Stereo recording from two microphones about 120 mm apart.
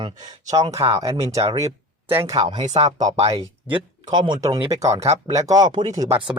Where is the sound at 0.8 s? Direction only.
30° right (ahead or behind).